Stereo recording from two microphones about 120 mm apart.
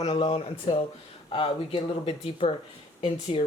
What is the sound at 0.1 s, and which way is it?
Speech, 50° left (ahead or behind).